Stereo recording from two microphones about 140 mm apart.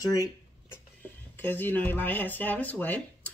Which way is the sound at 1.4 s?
15° left (ahead or behind).